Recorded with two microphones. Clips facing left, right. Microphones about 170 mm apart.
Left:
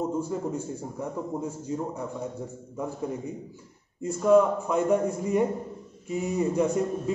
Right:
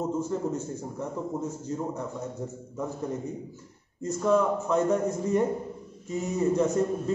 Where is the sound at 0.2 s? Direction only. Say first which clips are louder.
Right 1 dB; 10° left (ahead or behind).